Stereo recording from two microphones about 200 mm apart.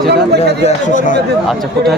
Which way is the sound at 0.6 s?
35° left (ahead or behind).